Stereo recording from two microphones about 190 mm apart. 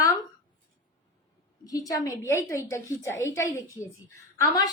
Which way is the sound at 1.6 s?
20° left (ahead or behind).